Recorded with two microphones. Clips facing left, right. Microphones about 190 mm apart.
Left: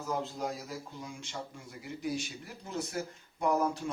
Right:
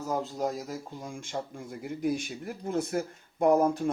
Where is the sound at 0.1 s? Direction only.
40° right (ahead or behind).